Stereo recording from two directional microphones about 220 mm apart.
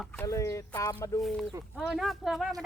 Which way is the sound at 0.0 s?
5° left (ahead or behind).